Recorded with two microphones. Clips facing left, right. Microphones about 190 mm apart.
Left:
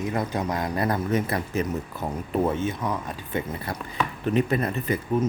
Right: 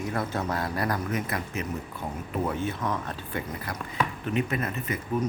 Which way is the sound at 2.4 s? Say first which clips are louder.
Left 2 dB; 20° left (ahead or behind).